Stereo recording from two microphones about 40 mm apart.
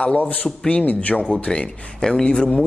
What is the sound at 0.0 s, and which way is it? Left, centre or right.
Speech, left.